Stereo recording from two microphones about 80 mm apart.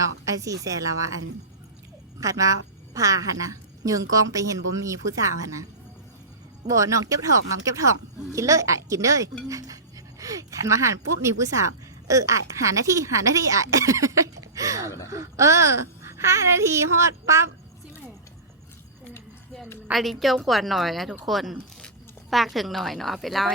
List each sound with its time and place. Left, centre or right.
0.0 s a woman's voice: right
2.2 s a woman's voice: right
6.7 s a woman's voice: right
19.9 s a woman's voice: centre